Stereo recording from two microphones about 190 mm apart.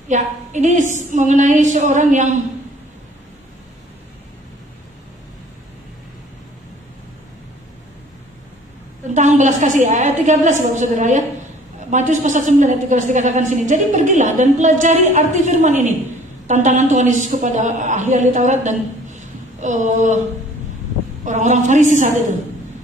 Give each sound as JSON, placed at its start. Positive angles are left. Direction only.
{"t": 0.1, "sound": "a woman's voice", "side_deg": -40}
{"t": 9.1, "sound": "a woman's voice", "side_deg": -40}
{"t": 21.2, "sound": "a woman's voice", "side_deg": -40}